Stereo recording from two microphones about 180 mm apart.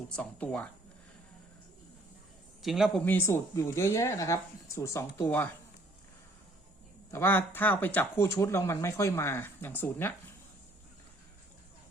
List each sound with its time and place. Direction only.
0.2 s speech: 5° left (ahead or behind)
2.6 s a man's voice: centre (ahead or behind)
3.0 s speech: 10° left (ahead or behind)
7.1 s speech: 15° left (ahead or behind)